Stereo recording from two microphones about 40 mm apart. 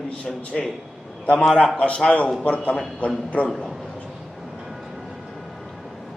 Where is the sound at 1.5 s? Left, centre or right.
Left.